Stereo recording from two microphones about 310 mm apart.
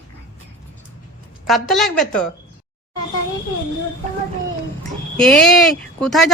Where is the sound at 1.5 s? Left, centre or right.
Centre.